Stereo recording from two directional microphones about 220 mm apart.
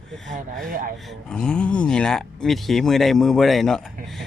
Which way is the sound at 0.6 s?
40° right (ahead or behind).